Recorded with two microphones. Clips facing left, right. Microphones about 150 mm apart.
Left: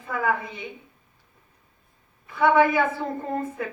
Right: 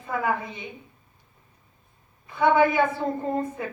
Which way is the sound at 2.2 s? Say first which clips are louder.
Left 1 dB; 25° right (ahead or behind).